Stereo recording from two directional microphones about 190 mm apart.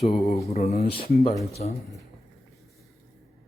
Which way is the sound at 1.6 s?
40° left (ahead or behind).